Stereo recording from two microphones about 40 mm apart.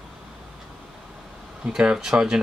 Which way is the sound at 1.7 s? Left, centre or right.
Centre.